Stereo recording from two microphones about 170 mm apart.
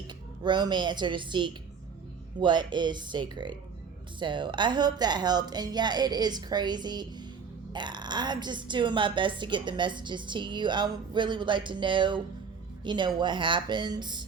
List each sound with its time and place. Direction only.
0.4 s speech: 25° right (ahead or behind)